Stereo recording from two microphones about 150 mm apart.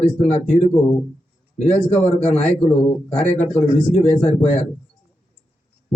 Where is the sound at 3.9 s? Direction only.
45° left (ahead or behind).